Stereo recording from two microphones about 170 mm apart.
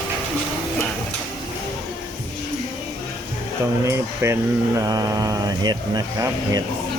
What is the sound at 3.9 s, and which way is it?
Speech, 15° right (ahead or behind).